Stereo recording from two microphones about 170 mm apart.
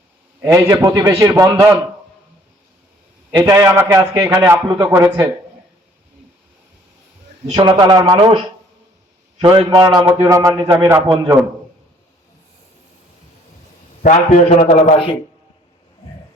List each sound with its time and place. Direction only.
0.4 s a man's voice: 15° right (ahead or behind)
3.3 s a man's voice: 20° right (ahead or behind)
7.5 s a man's voice: 25° right (ahead or behind)
9.4 s a man's voice: 30° right (ahead or behind)
14.0 s a man's voice: 45° left (ahead or behind)
14.6 s a man's voice: 35° left (ahead or behind)